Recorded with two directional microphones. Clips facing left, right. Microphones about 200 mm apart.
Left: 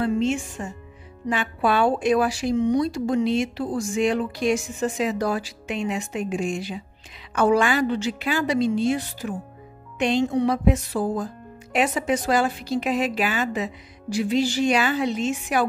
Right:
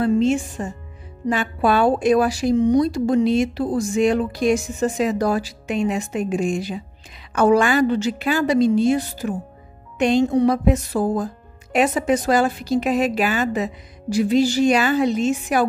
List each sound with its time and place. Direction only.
0.0 s a woman's voice: 40° right (ahead or behind)